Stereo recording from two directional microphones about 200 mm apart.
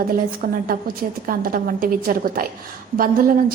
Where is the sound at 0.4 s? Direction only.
45° right (ahead or behind).